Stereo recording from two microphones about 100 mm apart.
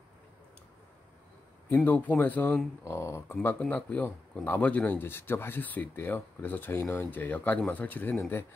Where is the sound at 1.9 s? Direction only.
20° left (ahead or behind).